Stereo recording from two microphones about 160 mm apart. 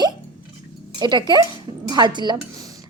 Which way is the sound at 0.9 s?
25° right (ahead or behind).